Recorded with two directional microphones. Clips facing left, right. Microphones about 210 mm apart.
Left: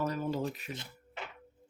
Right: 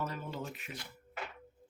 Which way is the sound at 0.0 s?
40° left (ahead or behind).